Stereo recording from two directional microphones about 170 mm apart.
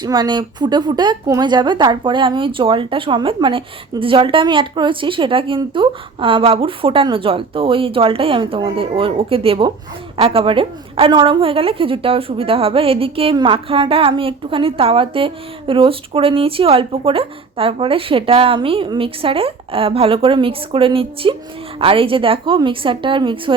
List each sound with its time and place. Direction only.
0.0 s a woman's voice: 25° right (ahead or behind)